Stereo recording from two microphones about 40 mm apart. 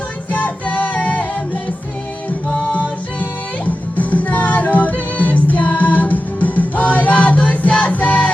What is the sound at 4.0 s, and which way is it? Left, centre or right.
Music, left.